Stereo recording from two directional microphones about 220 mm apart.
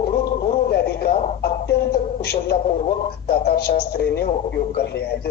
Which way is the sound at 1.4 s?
45° left (ahead or behind).